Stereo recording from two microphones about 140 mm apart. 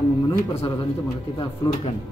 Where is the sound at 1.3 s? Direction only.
40° left (ahead or behind).